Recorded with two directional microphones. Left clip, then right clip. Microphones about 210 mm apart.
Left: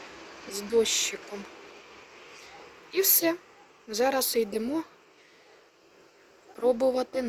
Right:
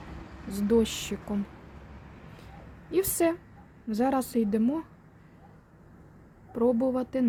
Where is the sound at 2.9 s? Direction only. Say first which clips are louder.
Even; 10° right (ahead or behind).